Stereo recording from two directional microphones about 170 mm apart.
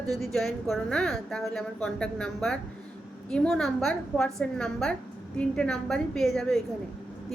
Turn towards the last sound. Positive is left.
turn(degrees=0)  # may be behind; listen again after turning